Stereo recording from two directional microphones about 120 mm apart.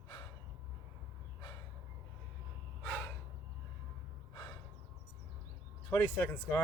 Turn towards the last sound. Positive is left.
turn(degrees=15)  # may be behind; listen again after turning